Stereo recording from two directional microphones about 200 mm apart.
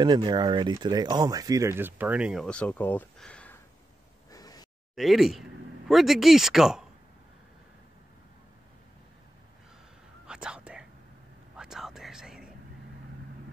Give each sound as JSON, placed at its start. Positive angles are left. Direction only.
{"t": 0.0, "sound": "speech", "side_deg": -20}
{"t": 4.3, "sound": "a sound", "side_deg": 20}
{"t": 4.9, "sound": "speech", "side_deg": 0}
{"t": 10.2, "sound": "whispering", "side_deg": -5}